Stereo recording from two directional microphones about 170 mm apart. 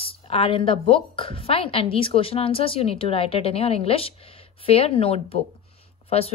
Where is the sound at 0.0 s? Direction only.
35° left (ahead or behind).